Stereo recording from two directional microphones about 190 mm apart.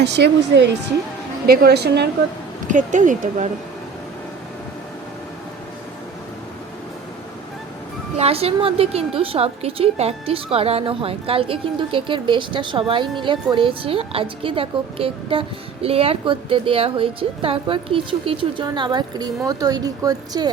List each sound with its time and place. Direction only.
0.0 s a woman's voice: 60° right (ahead or behind)
2.6 s speech: 40° right (ahead or behind)
8.2 s a woman's voice: 30° right (ahead or behind)